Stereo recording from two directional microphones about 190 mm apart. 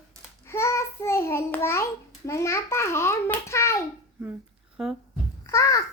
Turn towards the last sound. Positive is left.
turn(degrees=15)  # may be behind; listen again after turning